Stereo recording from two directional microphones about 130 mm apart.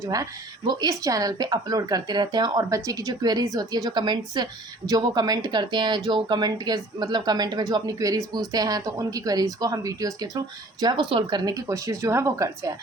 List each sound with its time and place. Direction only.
0.0 s a woman's voice: 25° right (ahead or behind)